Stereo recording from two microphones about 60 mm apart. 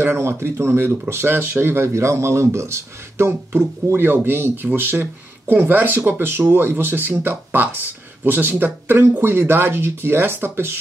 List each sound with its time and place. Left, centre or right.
0.0 s speech: right